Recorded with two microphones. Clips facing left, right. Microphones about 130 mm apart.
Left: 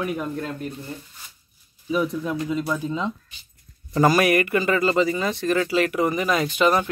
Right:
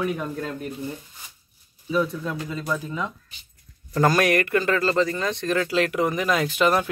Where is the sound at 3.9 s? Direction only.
10° left (ahead or behind).